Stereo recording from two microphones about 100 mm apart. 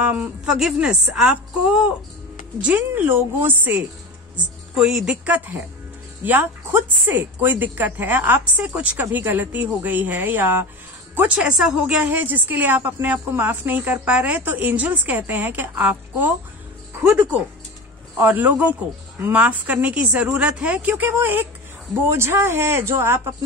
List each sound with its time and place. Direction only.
0.5 s a woman's voice: 5° right (ahead or behind)
4.7 s a woman's voice: 5° right (ahead or behind)
11.5 s a woman's voice: 5° right (ahead or behind)
12.0 s a woman's voice: 20° right (ahead or behind)
18.1 s a woman's voice: 20° right (ahead or behind)